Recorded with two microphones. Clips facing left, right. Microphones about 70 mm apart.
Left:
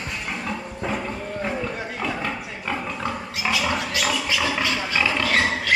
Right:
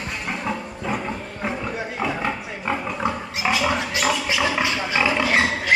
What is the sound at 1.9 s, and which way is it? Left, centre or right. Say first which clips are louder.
Pig: right 3 dB; centre.